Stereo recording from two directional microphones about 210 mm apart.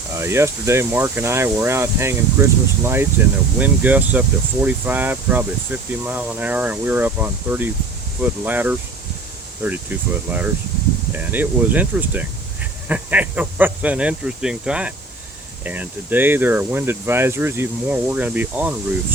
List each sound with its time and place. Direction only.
0.2 s speech: 10° right (ahead or behind)